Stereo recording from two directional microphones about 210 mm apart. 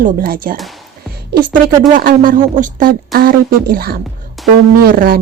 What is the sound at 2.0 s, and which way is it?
Speech, 40° right (ahead or behind).